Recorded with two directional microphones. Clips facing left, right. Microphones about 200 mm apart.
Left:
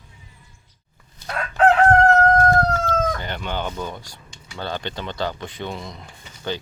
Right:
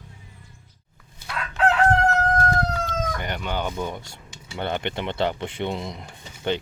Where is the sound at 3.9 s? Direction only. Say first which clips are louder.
Right 1 dB; 25° right (ahead or behind).